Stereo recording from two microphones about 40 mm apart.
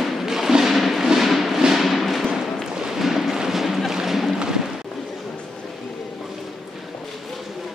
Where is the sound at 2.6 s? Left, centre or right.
Centre.